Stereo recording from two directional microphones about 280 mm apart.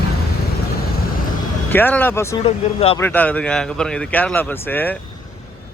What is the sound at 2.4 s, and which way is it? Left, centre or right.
Speech, left.